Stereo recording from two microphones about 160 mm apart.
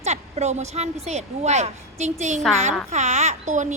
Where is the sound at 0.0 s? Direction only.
45° right (ahead or behind).